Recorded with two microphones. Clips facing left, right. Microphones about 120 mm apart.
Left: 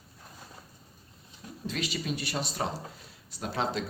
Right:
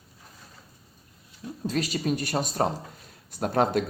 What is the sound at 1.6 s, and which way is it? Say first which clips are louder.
Speech: right 6 dB; 40° right (ahead or behind).